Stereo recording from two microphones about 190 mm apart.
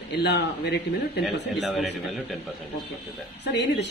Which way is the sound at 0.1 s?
65° left (ahead or behind).